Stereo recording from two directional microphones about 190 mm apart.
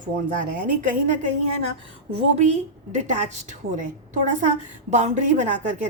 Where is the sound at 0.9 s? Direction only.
40° right (ahead or behind).